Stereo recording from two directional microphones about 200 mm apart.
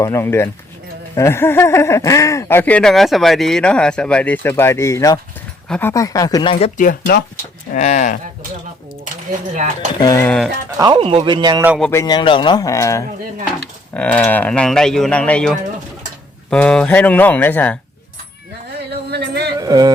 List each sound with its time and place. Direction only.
0.0 s speech: 15° left (ahead or behind)
5.6 s speech: 5° left (ahead or behind)
5.9 s speech: 15° left (ahead or behind); by 8.2 s 40° left (ahead or behind)
9.6 s speech: 35° right (ahead or behind)
10.0 s speech: 15° left (ahead or behind)
10.8 s speech: 25° right (ahead or behind)
11.8 s speech: 10° left (ahead or behind)
19.1 s music: 55° right (ahead or behind)
19.5 s music: 20° right (ahead or behind)